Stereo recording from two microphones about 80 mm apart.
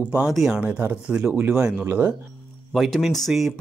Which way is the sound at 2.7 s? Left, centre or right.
Centre.